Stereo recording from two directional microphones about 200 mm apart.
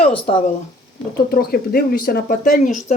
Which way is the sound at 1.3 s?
50° left (ahead or behind).